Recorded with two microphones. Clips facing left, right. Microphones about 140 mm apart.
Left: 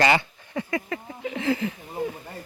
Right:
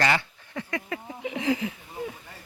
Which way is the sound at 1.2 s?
15° right (ahead or behind).